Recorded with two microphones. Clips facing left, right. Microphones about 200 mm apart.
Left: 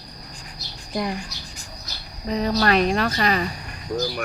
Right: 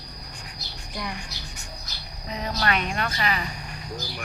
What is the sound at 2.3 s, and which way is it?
Speech, 35° left (ahead or behind).